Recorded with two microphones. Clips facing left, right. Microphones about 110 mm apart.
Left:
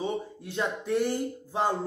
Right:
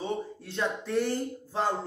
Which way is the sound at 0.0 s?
15° left (ahead or behind).